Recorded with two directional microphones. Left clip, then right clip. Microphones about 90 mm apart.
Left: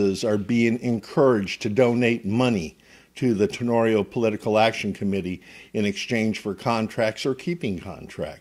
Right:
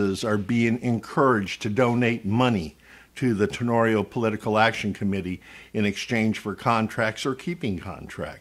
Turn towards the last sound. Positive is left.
turn(degrees=35)  # may be behind; listen again after turning